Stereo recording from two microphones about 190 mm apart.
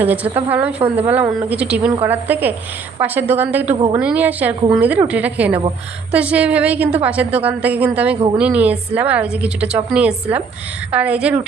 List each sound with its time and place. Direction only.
0.0 s a woman's voice: 10° right (ahead or behind)
3.7 s a woman's voice: 25° right (ahead or behind)
4.0 s a woman's voice: 10° right (ahead or behind)